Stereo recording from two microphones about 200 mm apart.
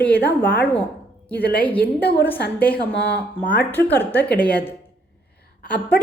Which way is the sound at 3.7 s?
10° left (ahead or behind).